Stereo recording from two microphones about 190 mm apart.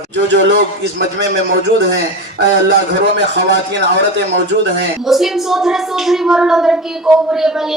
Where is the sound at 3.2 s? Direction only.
65° right (ahead or behind).